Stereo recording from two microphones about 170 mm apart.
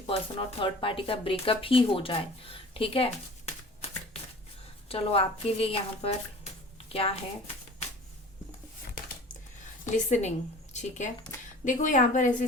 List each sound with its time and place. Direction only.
0.1 s speech: 30° left (ahead or behind)
4.9 s speech: 35° left (ahead or behind)
9.8 s a woman's voice: 45° left (ahead or behind)